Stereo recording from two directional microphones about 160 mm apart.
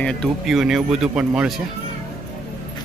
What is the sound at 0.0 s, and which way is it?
Speech, 5° left (ahead or behind).